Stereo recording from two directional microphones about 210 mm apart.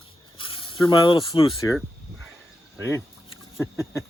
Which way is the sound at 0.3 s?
25° left (ahead or behind).